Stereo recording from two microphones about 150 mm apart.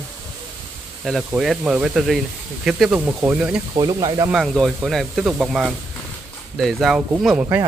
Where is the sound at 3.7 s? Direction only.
25° right (ahead or behind).